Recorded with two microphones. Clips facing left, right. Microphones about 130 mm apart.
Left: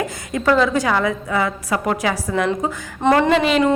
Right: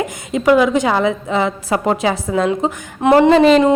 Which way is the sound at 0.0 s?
20° right (ahead or behind).